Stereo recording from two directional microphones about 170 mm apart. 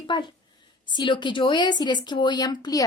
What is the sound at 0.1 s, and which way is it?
A woman's voice, 25° left (ahead or behind).